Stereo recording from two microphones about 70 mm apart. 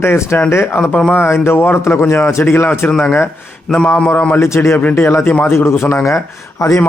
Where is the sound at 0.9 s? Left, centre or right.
Centre.